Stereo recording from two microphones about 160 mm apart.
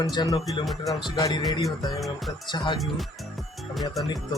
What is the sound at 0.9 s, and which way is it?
Speech, 25° left (ahead or behind).